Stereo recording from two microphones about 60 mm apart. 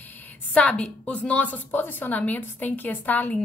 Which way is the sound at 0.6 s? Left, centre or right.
Left.